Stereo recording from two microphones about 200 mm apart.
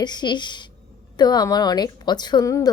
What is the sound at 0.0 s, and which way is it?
A woman's voice, 20° left (ahead or behind).